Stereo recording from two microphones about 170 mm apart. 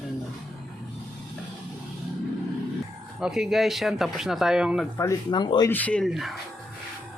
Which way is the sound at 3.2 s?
Centre (ahead or behind).